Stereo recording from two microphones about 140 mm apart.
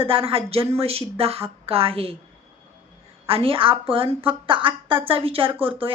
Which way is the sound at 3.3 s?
40° right (ahead or behind).